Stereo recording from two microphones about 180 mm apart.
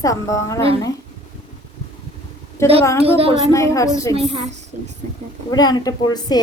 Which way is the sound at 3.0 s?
30° right (ahead or behind).